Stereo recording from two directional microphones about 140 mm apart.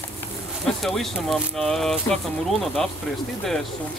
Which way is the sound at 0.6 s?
Centre (ahead or behind).